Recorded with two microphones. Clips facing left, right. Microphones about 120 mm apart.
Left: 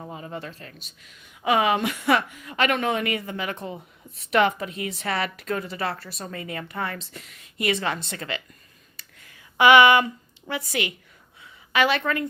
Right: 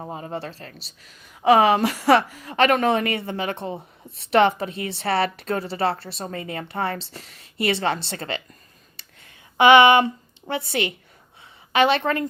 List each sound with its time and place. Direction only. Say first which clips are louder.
0.0 s a woman's voice: right 4 dB; 35° right (ahead or behind)
9.0 s a sound: left 1 dB; 25° right (ahead or behind)
11.7 s speech: right 3 dB; 25° right (ahead or behind)